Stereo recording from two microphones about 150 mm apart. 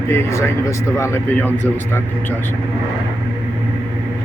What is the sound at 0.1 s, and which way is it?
Speech, 20° left (ahead or behind).